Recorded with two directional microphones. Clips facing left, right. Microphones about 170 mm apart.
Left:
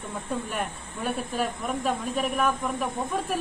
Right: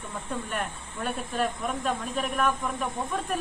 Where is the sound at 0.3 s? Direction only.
5° left (ahead or behind).